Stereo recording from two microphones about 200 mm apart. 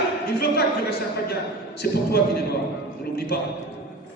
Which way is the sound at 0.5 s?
55° left (ahead or behind).